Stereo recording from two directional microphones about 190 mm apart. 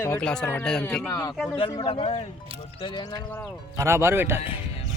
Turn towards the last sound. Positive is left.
turn(degrees=-10)  # may be behind; listen again after turning